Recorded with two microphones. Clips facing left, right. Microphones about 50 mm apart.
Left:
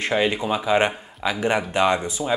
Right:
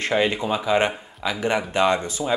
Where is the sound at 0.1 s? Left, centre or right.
Centre.